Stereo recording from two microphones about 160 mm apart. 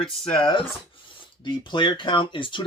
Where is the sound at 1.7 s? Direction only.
30° left (ahead or behind).